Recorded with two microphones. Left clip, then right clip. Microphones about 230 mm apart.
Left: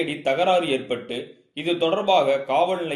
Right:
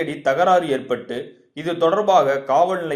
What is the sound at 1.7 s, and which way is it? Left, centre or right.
Speech, centre.